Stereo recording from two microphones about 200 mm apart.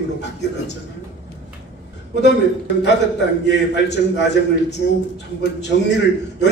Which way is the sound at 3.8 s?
60° left (ahead or behind).